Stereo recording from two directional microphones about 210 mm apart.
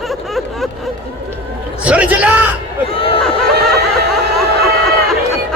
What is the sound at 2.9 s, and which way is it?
Speech, 25° left (ahead or behind).